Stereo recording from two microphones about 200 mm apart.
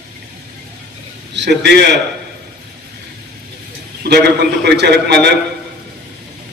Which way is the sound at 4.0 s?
55° right (ahead or behind).